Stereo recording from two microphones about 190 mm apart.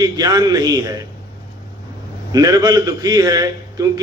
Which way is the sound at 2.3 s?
20° right (ahead or behind).